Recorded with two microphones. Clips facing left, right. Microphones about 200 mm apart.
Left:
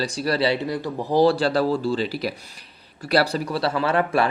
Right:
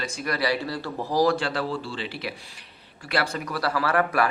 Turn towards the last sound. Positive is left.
turn(degrees=25)  # may be behind; listen again after turning